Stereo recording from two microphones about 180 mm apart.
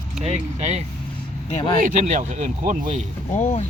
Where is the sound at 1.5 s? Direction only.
25° left (ahead or behind).